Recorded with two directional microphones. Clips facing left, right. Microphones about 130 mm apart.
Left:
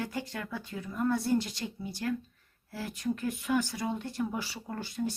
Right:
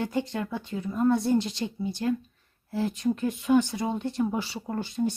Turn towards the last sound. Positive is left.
turn(degrees=-20)  # may be behind; listen again after turning